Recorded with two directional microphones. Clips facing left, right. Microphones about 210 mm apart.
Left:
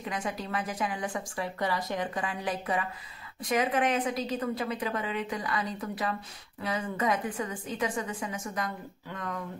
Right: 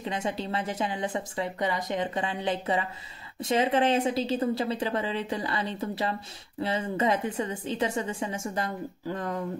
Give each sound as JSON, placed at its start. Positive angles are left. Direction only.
{"t": 0.0, "sound": "a woman's voice", "side_deg": -25}